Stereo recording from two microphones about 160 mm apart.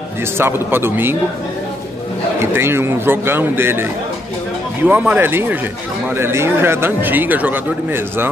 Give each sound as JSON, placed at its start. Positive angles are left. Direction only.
{"t": 0.4, "sound": "speech", "side_deg": -15}
{"t": 2.5, "sound": "speech", "side_deg": -15}
{"t": 4.8, "sound": "speech", "side_deg": -10}